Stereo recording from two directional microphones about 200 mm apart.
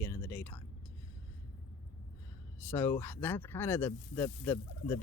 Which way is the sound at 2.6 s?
10° left (ahead or behind).